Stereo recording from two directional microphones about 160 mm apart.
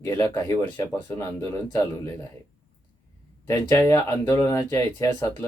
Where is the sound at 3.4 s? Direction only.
15° left (ahead or behind).